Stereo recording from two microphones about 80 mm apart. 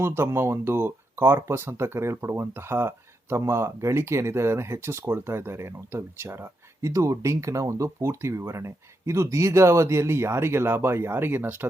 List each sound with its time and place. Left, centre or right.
0.0 s speech: right